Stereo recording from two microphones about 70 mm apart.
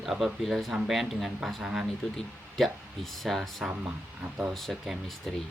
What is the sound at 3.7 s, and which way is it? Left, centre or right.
Speech, right.